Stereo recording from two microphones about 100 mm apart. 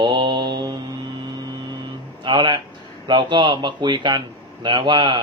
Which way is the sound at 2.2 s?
50° right (ahead or behind).